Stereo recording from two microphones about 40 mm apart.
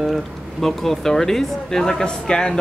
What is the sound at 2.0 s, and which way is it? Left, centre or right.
Speech, left.